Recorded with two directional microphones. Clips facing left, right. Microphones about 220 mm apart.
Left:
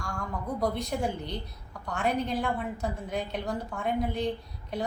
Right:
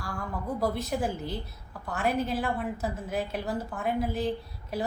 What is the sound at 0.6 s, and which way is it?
Speech, 5° right (ahead or behind).